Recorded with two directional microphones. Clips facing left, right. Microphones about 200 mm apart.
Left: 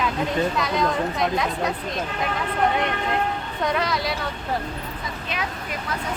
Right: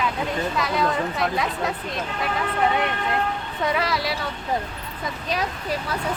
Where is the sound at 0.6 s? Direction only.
Centre (ahead or behind).